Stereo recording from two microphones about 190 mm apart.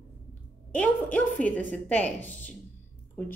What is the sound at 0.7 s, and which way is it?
Speech, 10° left (ahead or behind).